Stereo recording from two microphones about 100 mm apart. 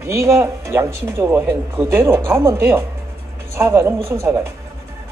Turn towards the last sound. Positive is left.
turn(degrees=-25)  # may be behind; listen again after turning